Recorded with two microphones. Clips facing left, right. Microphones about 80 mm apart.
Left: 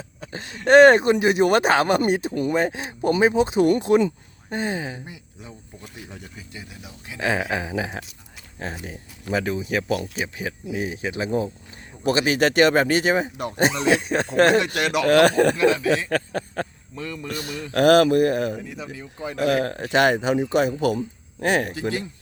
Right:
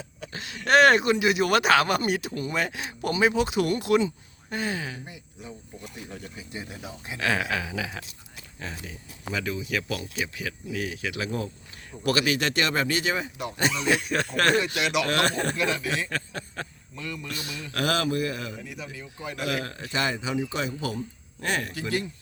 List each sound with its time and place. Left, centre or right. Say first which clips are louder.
0.2 s speech: left 3 dB; left
6.5 s speech: right 3 dB; right
7.2 s speech: left 3 dB; left
12.4 s speech: left 9 dB; left
13.9 s speech: left 6 dB; left
15.2 s speech: left 10 dB; left
15.5 s speech: left 8 dB; left
16.0 s speech: left 8 dB; left
16.9 s speech: left 4 dB; left
17.3 s speech: left 12 dB; left
18.7 s speech: left 4 dB; left
19.9 s speech: left 9 dB; left
21.7 s speech: left 3 dB; left